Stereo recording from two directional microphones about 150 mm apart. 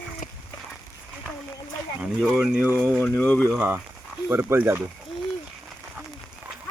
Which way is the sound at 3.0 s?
10° left (ahead or behind).